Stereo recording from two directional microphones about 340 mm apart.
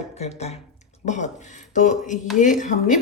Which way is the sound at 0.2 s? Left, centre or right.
Centre.